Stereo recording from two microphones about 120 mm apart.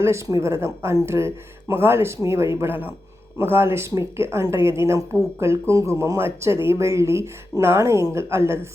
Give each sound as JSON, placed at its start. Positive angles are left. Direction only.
{"t": 0.0, "sound": "speech", "side_deg": -25}